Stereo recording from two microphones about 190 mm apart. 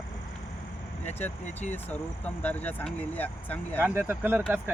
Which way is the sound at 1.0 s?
10° left (ahead or behind).